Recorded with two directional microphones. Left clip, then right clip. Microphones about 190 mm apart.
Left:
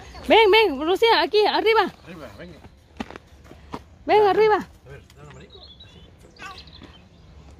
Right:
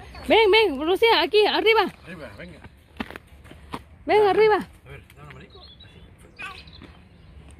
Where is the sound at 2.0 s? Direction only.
15° right (ahead or behind).